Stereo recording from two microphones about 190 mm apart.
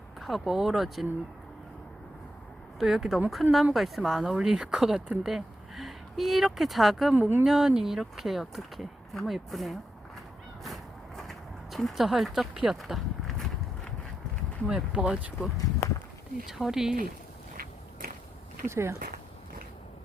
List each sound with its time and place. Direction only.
0.2 s speech: centre (ahead or behind)
2.7 s speech: centre (ahead or behind)
11.2 s a sound: centre (ahead or behind)
14.7 s speech: 5° right (ahead or behind)
18.7 s speech: 15° right (ahead or behind)
18.9 s a sound: 50° right (ahead or behind)